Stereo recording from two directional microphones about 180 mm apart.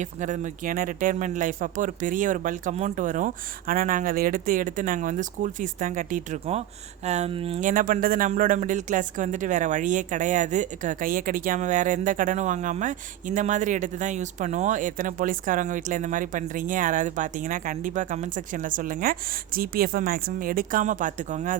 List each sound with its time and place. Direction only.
0.0 s speech: 45° right (ahead or behind)
7.6 s speech: 50° right (ahead or behind)